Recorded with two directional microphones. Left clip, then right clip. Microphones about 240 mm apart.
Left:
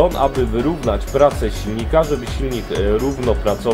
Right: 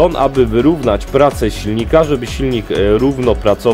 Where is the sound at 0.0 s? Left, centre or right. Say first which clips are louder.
Right 4 dB; right.